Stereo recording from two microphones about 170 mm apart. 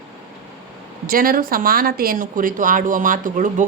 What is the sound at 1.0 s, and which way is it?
Speech, 55° right (ahead or behind).